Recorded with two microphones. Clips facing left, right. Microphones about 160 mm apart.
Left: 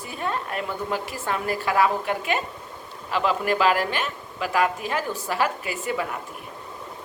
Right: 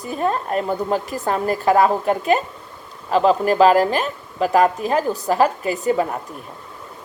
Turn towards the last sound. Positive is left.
turn(degrees=-40)  # may be behind; listen again after turning